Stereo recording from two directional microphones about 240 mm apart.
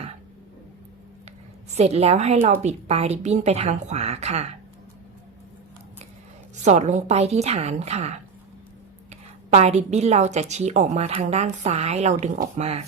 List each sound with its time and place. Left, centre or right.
1.7 s a woman's voice: right
6.6 s a woman's voice: right
9.5 s a woman's voice: right